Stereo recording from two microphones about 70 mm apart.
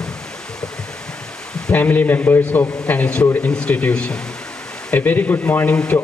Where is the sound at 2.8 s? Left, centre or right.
Centre.